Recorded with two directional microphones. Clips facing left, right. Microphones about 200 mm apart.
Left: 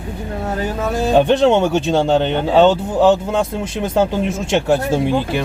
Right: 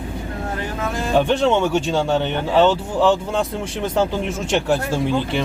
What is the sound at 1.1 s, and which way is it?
Speech, 15° left (ahead or behind).